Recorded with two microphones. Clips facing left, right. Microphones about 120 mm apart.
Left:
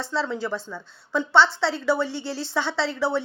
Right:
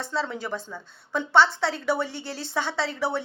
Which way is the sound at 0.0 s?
30° left (ahead or behind).